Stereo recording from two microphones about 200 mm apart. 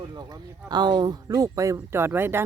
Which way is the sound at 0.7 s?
20° right (ahead or behind).